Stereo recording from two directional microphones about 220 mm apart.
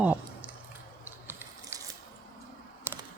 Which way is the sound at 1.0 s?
10° right (ahead or behind).